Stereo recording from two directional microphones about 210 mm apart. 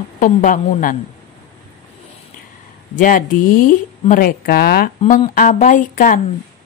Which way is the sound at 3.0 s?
40° left (ahead or behind).